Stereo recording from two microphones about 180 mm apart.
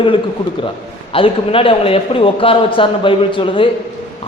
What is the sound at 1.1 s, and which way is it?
A man's voice, 30° left (ahead or behind).